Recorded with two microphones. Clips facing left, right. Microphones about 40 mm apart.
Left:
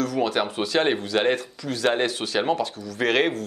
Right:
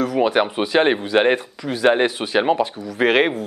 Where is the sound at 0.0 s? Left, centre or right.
Right.